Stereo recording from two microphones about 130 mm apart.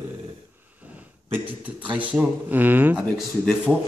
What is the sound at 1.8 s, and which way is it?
Speech, 40° right (ahead or behind).